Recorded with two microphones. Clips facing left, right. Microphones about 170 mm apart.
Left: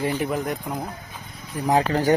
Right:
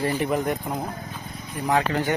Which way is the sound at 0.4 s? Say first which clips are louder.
Right 2 dB; centre (ahead or behind).